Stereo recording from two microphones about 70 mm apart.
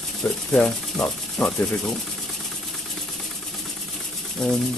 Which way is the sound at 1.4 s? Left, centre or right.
Centre.